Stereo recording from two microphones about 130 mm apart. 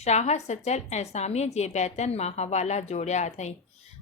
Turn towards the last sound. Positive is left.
turn(degrees=60)  # may be behind; listen again after turning